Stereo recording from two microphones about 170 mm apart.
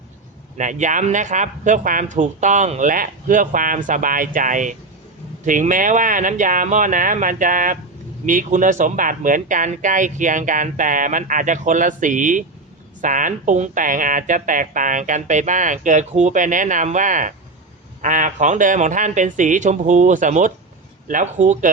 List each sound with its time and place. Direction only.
0.5 s speech: 45° right (ahead or behind)